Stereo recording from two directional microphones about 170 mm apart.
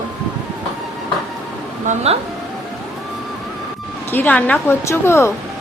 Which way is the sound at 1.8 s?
40° right (ahead or behind).